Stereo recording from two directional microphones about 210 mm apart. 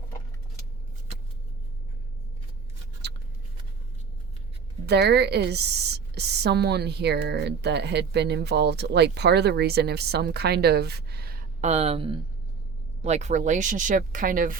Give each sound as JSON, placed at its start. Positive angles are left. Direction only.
{"t": 4.9, "sound": "a woman's voice", "side_deg": -50}